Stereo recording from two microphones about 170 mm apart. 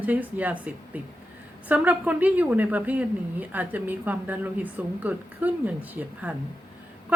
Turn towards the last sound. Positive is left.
turn(degrees=-10)  # may be behind; listen again after turning